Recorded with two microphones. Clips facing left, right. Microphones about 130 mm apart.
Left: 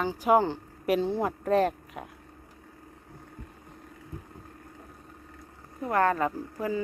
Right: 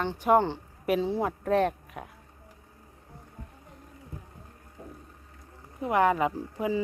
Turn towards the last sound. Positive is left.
turn(degrees=-15)  # may be behind; listen again after turning